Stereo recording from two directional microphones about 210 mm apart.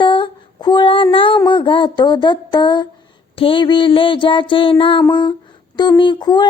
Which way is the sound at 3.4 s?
25° left (ahead or behind).